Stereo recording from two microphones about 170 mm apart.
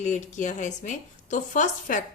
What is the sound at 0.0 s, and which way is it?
A woman's voice, 45° left (ahead or behind).